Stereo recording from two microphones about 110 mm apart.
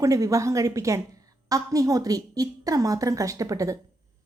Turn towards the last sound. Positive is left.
turn(degrees=-30)  # may be behind; listen again after turning